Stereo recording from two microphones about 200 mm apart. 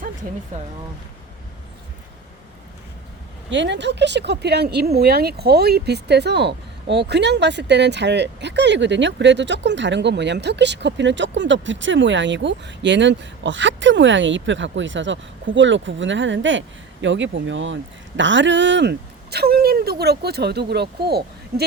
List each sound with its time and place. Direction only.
0.5 s speech: 35° right (ahead or behind)
3.5 s speech: 65° right (ahead or behind)